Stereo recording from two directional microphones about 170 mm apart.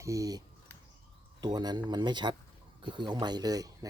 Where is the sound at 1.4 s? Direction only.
25° right (ahead or behind).